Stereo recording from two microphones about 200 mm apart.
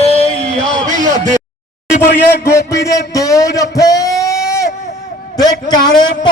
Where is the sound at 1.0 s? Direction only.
35° right (ahead or behind).